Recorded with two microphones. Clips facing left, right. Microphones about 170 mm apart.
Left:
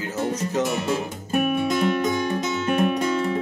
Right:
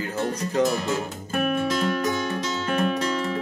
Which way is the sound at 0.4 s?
5° left (ahead or behind).